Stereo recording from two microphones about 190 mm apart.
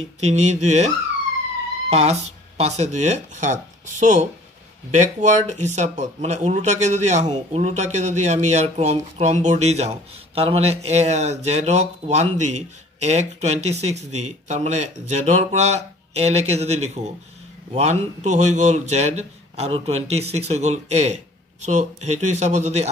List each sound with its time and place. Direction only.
0.2 s speech: 35° right (ahead or behind)